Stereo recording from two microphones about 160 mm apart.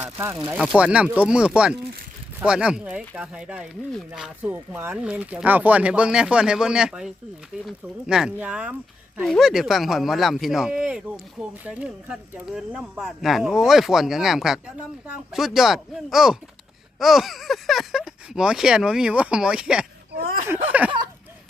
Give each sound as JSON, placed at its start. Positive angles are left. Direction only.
{"t": 0.0, "sound": "speech", "side_deg": -15}
{"t": 0.5, "sound": "speech", "side_deg": 0}
{"t": 4.5, "sound": "speech", "side_deg": -10}
{"t": 20.1, "sound": "speech", "side_deg": -70}